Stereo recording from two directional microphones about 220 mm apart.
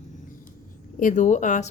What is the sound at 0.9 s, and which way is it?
Speech, 35° left (ahead or behind).